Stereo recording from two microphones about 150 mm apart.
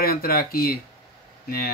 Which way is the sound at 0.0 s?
85° left.